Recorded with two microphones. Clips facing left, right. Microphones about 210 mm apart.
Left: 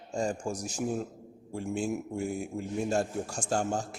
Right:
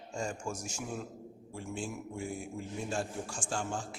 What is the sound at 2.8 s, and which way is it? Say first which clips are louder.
Mantra: left 7 dB; 40° left (ahead or behind).